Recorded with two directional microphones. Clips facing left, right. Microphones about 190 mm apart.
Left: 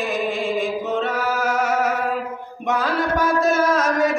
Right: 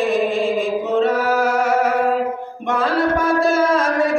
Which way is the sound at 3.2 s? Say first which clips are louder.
Right 2 dB; 30° right (ahead or behind).